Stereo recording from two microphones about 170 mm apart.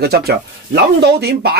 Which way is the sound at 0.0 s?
70° right (ahead or behind).